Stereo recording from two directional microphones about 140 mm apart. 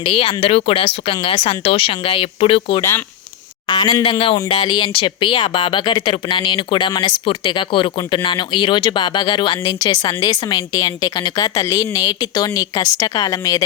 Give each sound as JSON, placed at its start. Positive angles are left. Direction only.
{"t": 0.0, "sound": "speech", "side_deg": 40}